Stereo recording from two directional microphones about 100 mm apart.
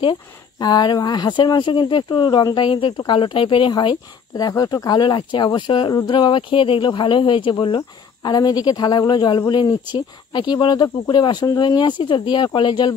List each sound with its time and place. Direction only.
0.0 s speech: 45° left (ahead or behind)
7.5 s speech: 45° left (ahead or behind)